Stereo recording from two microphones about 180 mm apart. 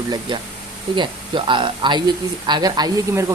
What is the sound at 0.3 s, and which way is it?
Speech, 25° right (ahead or behind).